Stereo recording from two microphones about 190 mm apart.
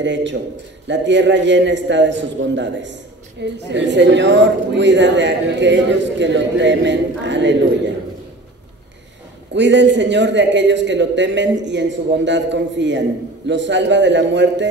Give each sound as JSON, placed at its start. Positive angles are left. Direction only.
{"t": 0.0, "sound": "a man's voice", "side_deg": -70}
{"t": 9.5, "sound": "a man's voice", "side_deg": -70}